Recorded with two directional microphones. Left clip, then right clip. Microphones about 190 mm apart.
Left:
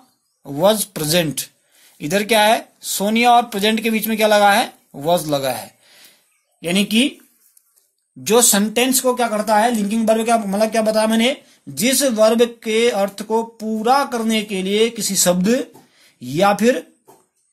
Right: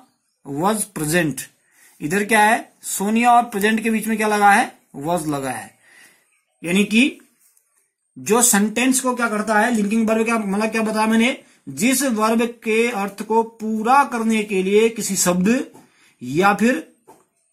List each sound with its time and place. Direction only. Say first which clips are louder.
0.4 s speech: left 5 dB; 35° left (ahead or behind)
8.3 s speech: left 2 dB; 35° left (ahead or behind)